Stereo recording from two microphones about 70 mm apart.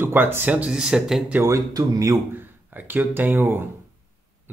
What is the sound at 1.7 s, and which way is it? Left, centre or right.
Speech, right.